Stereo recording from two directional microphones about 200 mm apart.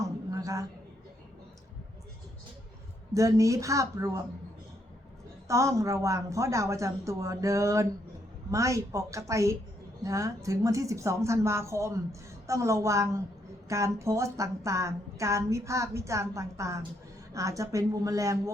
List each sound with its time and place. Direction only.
0.3 s a sound: 15° right (ahead or behind)
3.2 s a woman's voice: 15° right (ahead or behind)
5.5 s a woman's voice: 15° right (ahead or behind)